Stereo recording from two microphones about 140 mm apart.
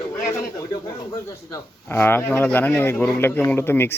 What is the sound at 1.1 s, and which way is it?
Speech, 20° left (ahead or behind).